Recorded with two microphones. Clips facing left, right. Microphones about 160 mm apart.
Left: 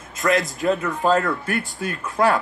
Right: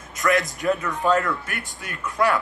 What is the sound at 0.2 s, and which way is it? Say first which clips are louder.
Speech: left 1 dB; 40° left (ahead or behind).